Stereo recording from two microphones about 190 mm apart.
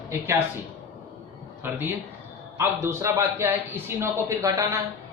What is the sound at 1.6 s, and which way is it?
A man's voice, 10° right (ahead or behind).